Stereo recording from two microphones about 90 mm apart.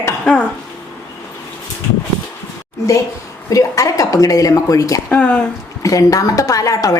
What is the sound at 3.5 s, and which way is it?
Speech, 40° left (ahead or behind).